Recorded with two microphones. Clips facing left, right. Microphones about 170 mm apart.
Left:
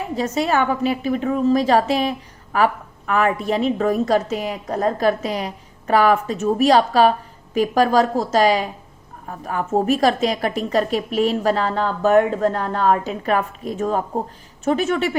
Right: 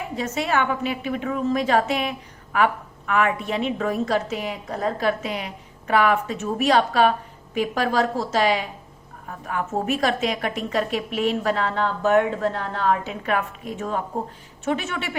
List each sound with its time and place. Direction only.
0.2 s a woman's voice: 35° left (ahead or behind)